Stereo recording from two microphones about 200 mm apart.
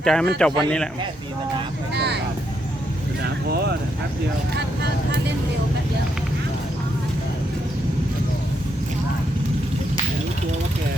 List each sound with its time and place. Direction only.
0.0 s speech: 5° left (ahead or behind)
2.0 s vehicle: 55° right (ahead or behind)
3.5 s speech: 55° right (ahead or behind)